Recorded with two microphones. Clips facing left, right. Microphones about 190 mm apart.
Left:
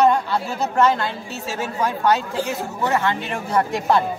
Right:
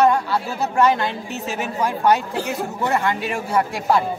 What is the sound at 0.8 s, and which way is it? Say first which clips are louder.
A woman's voice: right 1 dB; 15° right (ahead or behind).